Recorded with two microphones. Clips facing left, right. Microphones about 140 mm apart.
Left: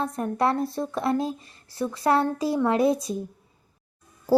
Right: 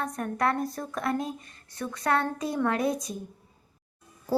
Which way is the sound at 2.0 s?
30° left (ahead or behind).